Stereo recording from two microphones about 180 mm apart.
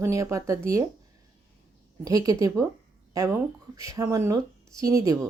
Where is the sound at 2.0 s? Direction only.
20° right (ahead or behind).